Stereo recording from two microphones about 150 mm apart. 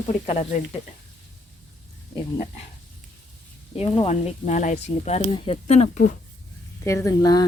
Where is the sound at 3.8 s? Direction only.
40° left (ahead or behind).